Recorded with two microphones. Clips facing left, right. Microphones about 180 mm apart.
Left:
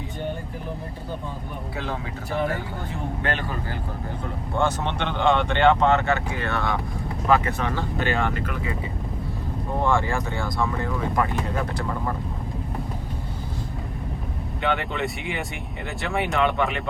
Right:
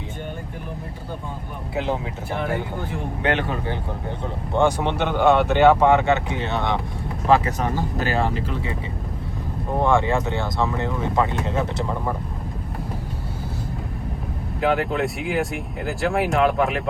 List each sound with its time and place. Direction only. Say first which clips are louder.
4.5 s speech: right 5 dB; 15° right (ahead or behind); by 7.5 s 30° right (ahead or behind)
7.6 s speech: right 2 dB; 40° right (ahead or behind)
9.8 s speech: right 4 dB; 20° right (ahead or behind)
14.6 s speech: right 5 dB; centre (ahead or behind)